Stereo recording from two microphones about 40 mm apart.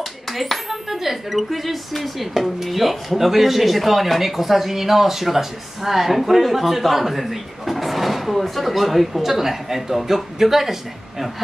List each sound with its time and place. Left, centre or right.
0.3 s speech: centre